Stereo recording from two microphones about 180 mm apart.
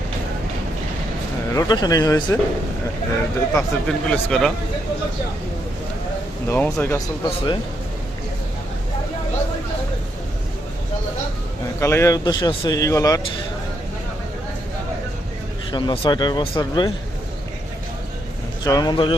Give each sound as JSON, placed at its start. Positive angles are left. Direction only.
{"t": 1.5, "sound": "speech", "side_deg": 20}
{"t": 3.5, "sound": "speech", "side_deg": 5}
{"t": 6.5, "sound": "speech", "side_deg": 15}
{"t": 7.3, "sound": "speech", "side_deg": 30}
{"t": 11.8, "sound": "speech", "side_deg": 15}
{"t": 15.7, "sound": "speech", "side_deg": 25}
{"t": 18.6, "sound": "speech", "side_deg": 20}